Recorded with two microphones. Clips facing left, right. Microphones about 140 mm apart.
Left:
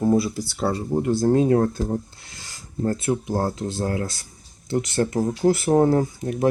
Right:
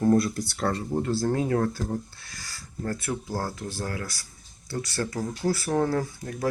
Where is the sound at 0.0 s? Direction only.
5° left (ahead or behind).